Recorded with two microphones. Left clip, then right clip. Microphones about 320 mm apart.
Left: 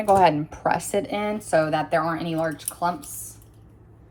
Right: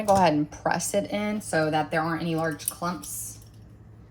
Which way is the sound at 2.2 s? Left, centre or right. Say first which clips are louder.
Left 2 dB; left.